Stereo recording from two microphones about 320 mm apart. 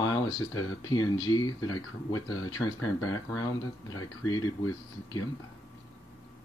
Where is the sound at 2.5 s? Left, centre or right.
Centre.